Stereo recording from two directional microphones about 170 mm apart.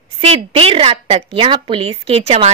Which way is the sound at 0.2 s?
35° right (ahead or behind).